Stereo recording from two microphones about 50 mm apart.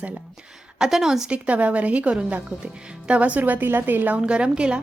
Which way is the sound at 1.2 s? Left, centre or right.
Right.